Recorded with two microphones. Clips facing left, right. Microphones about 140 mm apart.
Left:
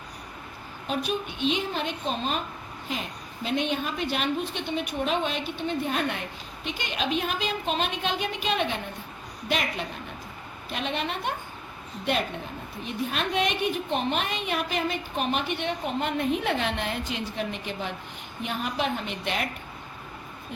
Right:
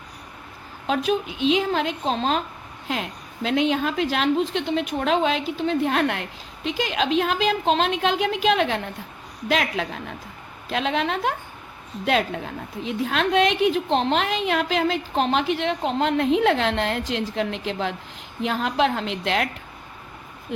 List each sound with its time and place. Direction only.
0.9 s a woman's voice: 90° right